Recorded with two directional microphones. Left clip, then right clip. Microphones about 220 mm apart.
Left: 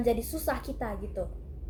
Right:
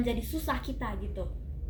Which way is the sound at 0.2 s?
10° left (ahead or behind).